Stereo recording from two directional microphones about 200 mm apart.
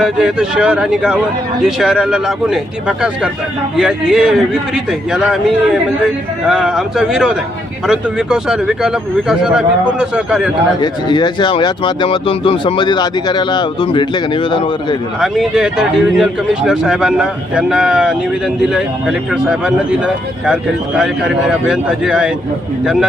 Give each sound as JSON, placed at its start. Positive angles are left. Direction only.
{"t": 0.0, "sound": "speech", "side_deg": -5}
{"t": 10.8, "sound": "speech", "side_deg": 20}
{"t": 15.2, "sound": "speech", "side_deg": 0}